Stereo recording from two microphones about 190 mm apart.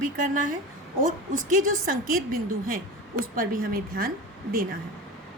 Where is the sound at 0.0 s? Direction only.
45° right (ahead or behind).